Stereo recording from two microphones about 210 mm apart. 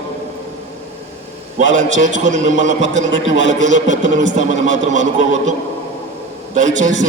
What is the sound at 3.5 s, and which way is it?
Speech, 35° right (ahead or behind).